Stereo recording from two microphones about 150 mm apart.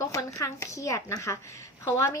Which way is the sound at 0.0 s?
20° left (ahead or behind).